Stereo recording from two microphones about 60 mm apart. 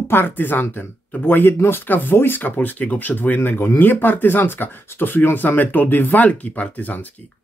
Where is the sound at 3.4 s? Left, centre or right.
Left.